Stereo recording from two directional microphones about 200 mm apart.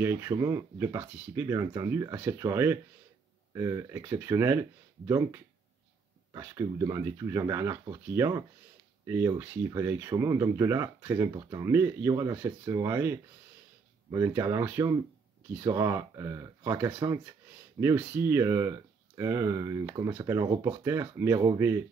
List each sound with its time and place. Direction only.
0.0 s speech: 15° right (ahead or behind)